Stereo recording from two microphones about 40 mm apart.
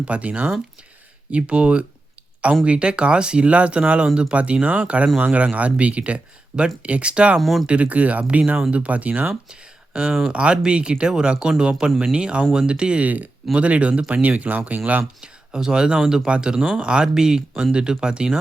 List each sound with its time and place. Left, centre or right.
0.0 s speech: right
7.3 s speech: centre
7.7 s speech: right
9.5 s a sound: right
10.3 s speech: right
15.2 s speech: centre